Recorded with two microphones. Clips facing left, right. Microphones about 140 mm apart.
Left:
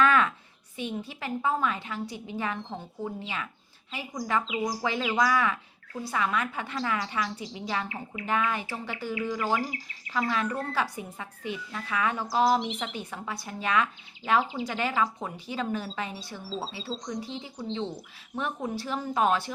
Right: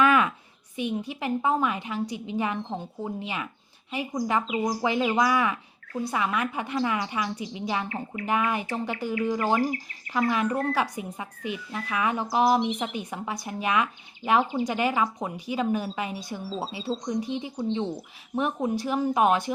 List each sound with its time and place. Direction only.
0.0 s a sound: 10° right (ahead or behind)
0.8 s speech: 15° right (ahead or behind)
14.4 s speech: 55° right (ahead or behind)
14.7 s speech: 15° right (ahead or behind)